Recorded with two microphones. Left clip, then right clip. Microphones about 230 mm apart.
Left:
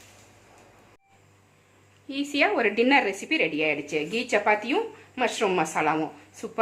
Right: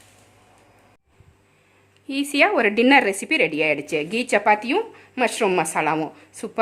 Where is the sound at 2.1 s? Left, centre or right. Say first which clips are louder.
Right 5 dB; right.